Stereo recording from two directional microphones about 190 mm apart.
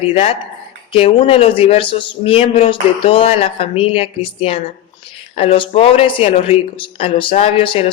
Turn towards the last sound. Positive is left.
turn(degrees=30)  # may be behind; listen again after turning